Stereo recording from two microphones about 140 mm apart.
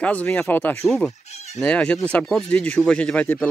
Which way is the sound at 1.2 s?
50° left (ahead or behind).